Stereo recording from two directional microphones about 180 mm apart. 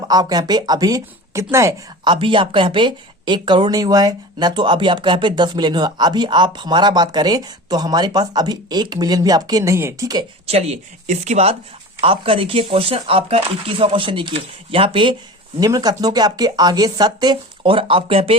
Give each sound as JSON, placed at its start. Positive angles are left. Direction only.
{"t": 0.1, "sound": "speech", "side_deg": -20}
{"t": 2.2, "sound": "speech", "side_deg": -30}
{"t": 10.4, "sound": "speech", "side_deg": -35}